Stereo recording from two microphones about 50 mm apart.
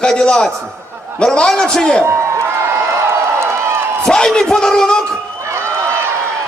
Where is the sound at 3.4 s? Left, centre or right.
Right.